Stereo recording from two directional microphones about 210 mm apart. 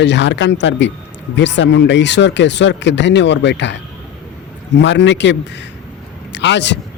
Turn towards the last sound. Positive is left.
turn(degrees=55)  # may be behind; listen again after turning